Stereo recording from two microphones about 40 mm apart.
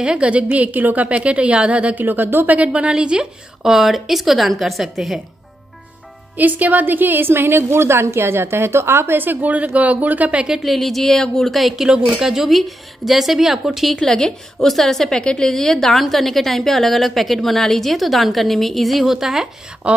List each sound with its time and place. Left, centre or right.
0.0 s speech: right
1.0 s speech: right
2.0 s speech: right
3.6 s a woman's voice: centre
6.3 s a woman's voice: right
9.2 s speech: right
9.8 s speech: right
10.6 s a woman's voice: centre
11.5 s a woman's voice: centre
14.0 s a woman's voice: centre